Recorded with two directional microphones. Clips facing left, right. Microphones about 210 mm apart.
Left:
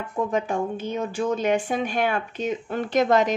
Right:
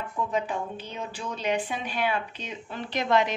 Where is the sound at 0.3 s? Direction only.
45° left (ahead or behind).